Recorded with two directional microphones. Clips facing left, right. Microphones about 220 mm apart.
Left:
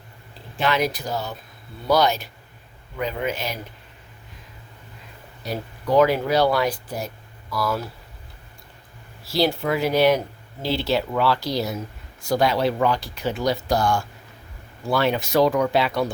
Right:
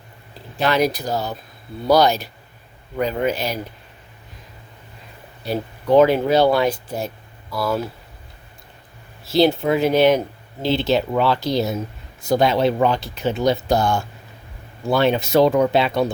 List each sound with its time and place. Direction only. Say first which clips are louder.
0.6 s speech: right 4 dB; 40° right (ahead or behind)
5.5 s speech: right 5 dB; 25° right (ahead or behind)
9.2 s speech: right 5 dB; 20° right (ahead or behind)